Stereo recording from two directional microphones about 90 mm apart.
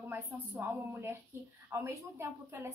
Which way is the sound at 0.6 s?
25° right (ahead or behind).